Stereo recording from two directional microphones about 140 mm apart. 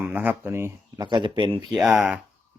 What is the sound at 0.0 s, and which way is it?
Speech, 15° right (ahead or behind).